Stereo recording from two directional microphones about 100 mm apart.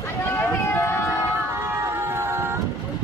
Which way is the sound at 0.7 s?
25° left (ahead or behind).